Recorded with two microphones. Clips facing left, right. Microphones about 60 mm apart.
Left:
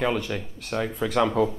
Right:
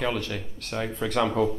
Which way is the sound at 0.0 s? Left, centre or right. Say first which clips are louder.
Left 3 dB; centre.